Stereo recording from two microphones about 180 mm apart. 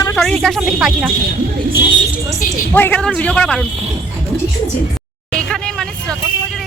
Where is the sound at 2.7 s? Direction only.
10° left (ahead or behind).